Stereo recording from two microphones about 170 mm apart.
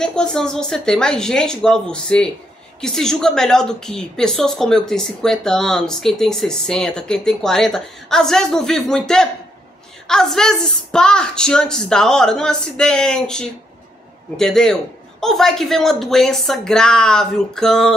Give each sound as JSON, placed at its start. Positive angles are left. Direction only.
{"t": 0.0, "sound": "a woman's voice", "side_deg": 5}